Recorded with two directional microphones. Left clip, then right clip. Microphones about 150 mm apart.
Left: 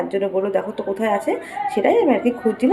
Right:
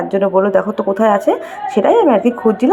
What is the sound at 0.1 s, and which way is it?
A woman's voice, 20° right (ahead or behind).